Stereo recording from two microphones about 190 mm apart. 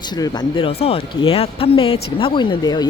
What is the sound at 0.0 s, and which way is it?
Speech, 20° left (ahead or behind).